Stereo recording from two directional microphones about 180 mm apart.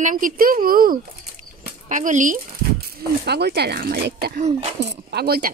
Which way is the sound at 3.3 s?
65° right (ahead or behind).